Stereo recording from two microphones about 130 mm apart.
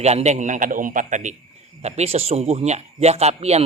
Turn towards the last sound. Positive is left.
turn(degrees=-55)  # may be behind; listen again after turning